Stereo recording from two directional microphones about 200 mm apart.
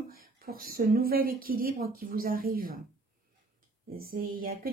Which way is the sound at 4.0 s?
50° right (ahead or behind).